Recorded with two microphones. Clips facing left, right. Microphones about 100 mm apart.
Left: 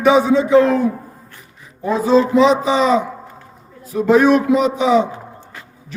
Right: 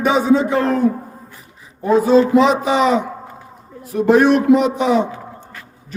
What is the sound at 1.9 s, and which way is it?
A man's voice, 55° right (ahead or behind).